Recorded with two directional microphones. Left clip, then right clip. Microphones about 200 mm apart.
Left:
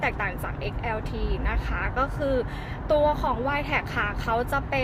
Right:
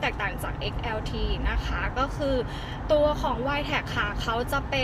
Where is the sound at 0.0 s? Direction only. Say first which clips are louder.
Left 1 dB; 10° left (ahead or behind).